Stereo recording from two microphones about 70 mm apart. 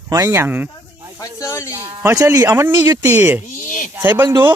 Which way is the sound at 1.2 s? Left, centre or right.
Left.